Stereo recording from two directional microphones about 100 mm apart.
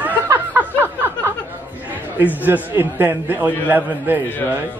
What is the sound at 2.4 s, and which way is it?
A man's voice, 20° right (ahead or behind).